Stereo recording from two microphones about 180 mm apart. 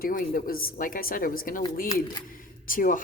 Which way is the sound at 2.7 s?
50° left (ahead or behind).